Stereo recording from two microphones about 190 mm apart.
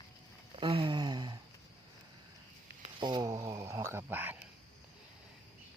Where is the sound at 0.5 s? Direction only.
25° right (ahead or behind).